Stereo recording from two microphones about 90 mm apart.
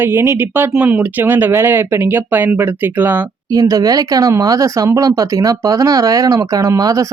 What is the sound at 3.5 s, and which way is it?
Speech, 40° right (ahead or behind).